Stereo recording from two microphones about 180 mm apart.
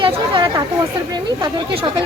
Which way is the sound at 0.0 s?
25° right (ahead or behind).